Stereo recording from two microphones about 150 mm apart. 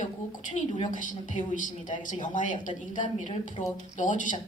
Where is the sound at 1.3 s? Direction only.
60° left (ahead or behind).